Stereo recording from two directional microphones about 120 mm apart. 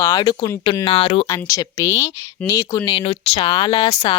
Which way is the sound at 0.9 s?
55° left (ahead or behind).